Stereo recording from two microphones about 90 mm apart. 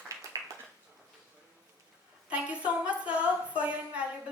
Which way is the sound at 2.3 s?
15° right (ahead or behind).